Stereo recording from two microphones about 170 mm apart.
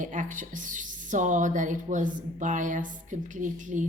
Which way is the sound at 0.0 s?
50° right (ahead or behind).